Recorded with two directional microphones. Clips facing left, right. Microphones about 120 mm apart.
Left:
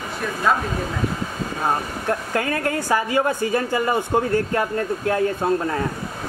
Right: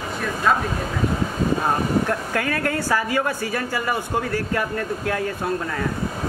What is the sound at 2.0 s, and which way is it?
A woman's voice, 25° left (ahead or behind).